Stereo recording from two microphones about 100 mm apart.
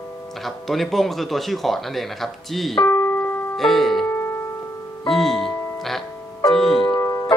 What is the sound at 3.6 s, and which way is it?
Music, centre (ahead or behind).